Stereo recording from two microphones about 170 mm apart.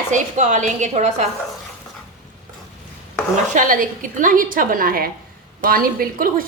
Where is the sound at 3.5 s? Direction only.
55° right (ahead or behind).